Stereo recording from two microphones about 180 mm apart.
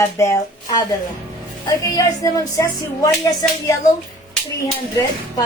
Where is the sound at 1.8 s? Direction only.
20° left (ahead or behind).